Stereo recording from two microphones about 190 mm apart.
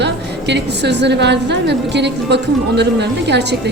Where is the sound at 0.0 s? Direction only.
65° right (ahead or behind).